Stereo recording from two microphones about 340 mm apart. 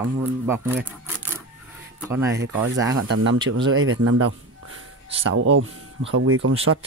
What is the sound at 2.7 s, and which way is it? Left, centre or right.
Speech, right.